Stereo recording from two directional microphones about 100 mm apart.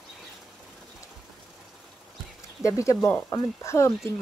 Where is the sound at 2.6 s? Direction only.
30° left (ahead or behind).